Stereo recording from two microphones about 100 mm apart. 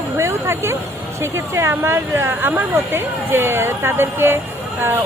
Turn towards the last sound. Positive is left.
turn(degrees=-25)  # may be behind; listen again after turning